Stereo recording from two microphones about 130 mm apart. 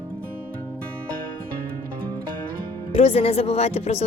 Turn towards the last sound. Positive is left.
turn(degrees=55)  # may be behind; listen again after turning